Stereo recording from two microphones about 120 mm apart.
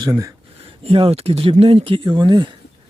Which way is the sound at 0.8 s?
55° right (ahead or behind).